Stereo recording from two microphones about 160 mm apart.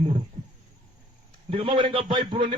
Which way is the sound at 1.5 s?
30° right (ahead or behind).